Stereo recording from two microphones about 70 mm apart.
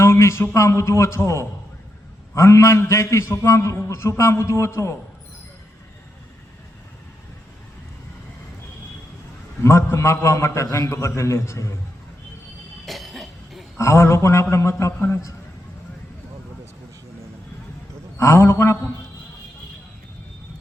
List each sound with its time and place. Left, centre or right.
0.0 s a sound: left
0.5 s a man's voice: left
9.6 s a man's voice: left
12.8 s cough: centre
13.7 s a man's voice: left
18.2 s a man's voice: left